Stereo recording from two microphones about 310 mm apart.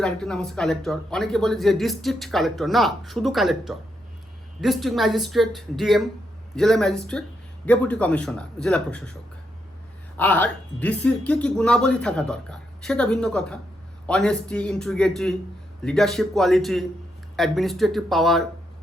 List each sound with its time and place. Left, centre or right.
0.0 s speech: centre
10.2 s speech: centre